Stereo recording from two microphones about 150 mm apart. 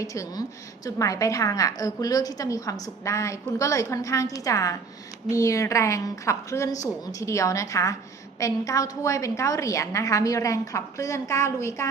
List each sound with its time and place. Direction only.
0.0 s a woman's voice: 20° left (ahead or behind)